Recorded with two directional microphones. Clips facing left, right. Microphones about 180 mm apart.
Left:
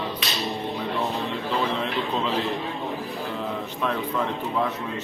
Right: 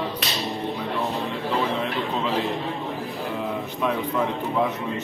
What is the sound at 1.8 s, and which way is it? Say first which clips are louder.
Speech: even; centre (ahead or behind).